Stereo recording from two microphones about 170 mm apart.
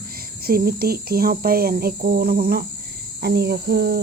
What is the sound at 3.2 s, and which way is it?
Speech, 75° right (ahead or behind).